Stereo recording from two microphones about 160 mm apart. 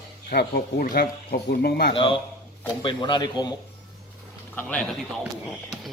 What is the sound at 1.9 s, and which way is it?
A man's voice, 35° left (ahead or behind).